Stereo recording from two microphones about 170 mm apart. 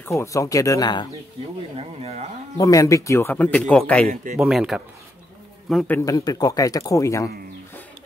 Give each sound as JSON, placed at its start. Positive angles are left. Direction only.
{"t": 0.0, "sound": "speech", "side_deg": 15}
{"t": 1.8, "sound": "speech", "side_deg": -40}
{"t": 2.5, "sound": "speech", "side_deg": 20}
{"t": 4.1, "sound": "speech", "side_deg": -50}
{"t": 4.4, "sound": "speech", "side_deg": 0}
{"t": 5.9, "sound": "speech", "side_deg": 20}